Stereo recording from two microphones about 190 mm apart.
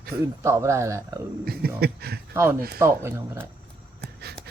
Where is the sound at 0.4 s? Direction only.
15° right (ahead or behind).